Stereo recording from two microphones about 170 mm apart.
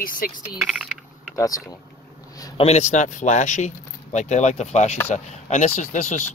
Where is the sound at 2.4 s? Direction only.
35° left (ahead or behind).